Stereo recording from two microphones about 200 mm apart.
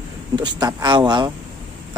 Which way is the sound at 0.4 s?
20° right (ahead or behind).